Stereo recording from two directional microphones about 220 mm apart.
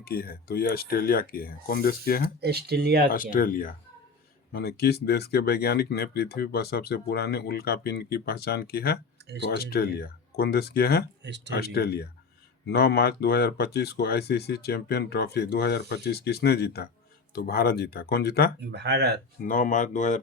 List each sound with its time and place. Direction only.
0.0 s speech: 45° left (ahead or behind)
2.4 s speech: 45° right (ahead or behind)
3.1 s speech: 40° left (ahead or behind)
18.6 s speech: 50° right (ahead or behind)
19.4 s speech: 35° left (ahead or behind)